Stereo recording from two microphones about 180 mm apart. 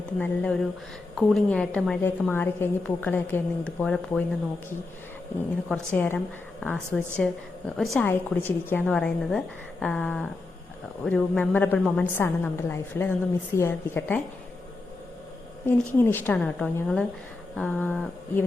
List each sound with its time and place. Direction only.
0.2 s a woman's voice: 5° left (ahead or behind)
5.6 s a woman's voice: 5° left (ahead or behind)
15.6 s a woman's voice: 10° left (ahead or behind)